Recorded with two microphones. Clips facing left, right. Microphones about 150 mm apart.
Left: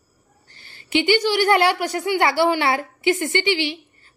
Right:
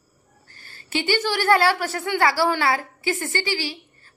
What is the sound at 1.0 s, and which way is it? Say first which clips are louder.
A woman's voice: left 2 dB; 15° left (ahead or behind).